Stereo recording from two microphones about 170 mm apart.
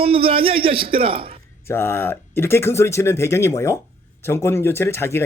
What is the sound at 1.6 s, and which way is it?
Speech, 15° left (ahead or behind).